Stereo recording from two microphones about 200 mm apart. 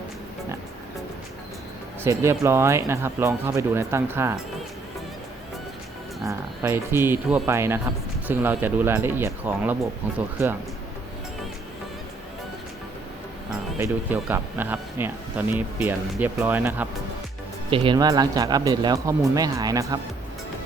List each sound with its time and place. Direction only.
2.0 s speech: 15° right (ahead or behind)
6.2 s speech: 15° right (ahead or behind)
13.7 s speech: 10° right (ahead or behind)
17.7 s speech: 25° right (ahead or behind)